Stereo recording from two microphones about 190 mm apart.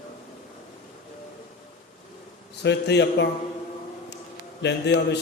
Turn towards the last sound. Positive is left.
turn(degrees=65)  # may be behind; listen again after turning